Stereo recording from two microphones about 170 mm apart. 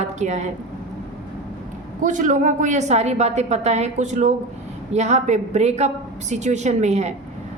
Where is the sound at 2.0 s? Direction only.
50° right (ahead or behind).